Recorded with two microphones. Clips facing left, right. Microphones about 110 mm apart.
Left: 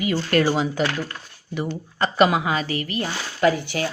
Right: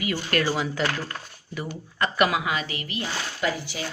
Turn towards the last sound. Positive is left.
turn(degrees=60)  # may be behind; listen again after turning